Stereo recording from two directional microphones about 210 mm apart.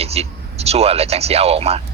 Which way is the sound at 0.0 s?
30° right (ahead or behind).